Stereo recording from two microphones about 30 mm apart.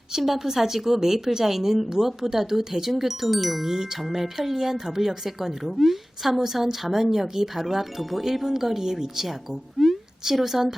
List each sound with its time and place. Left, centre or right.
0.2 s a woman's voice: centre
3.7 s a woman's voice: centre
9.2 s speech: centre
10.3 s a woman's voice: centre